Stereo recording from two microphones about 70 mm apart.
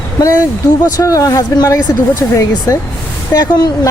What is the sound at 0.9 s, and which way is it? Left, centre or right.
Speech, left.